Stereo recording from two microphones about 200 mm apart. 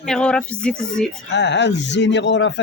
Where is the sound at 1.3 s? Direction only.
60° left (ahead or behind).